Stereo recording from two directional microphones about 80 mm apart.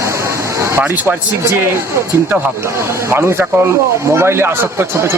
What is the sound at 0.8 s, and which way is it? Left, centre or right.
Speech, right.